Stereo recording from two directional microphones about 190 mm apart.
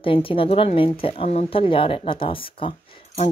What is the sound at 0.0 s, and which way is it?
A woman's voice, 30° left (ahead or behind).